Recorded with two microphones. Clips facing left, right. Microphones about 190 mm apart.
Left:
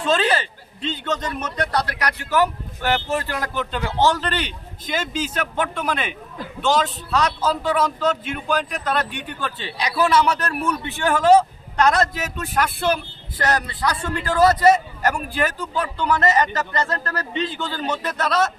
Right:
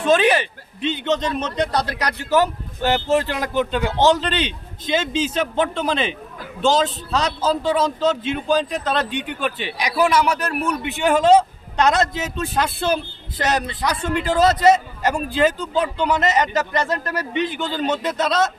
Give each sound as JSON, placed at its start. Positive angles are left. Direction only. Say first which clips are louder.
{"t": 0.0, "sound": "a man's voice", "louder": "right 4 dB", "side_deg": -15}